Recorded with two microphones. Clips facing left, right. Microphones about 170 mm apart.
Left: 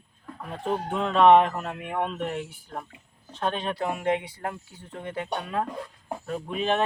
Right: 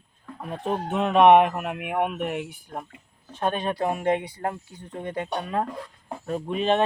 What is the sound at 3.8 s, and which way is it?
Speech, 45° right (ahead or behind).